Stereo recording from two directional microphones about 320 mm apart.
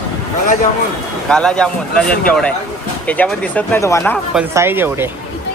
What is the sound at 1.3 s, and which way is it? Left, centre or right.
Speech, centre.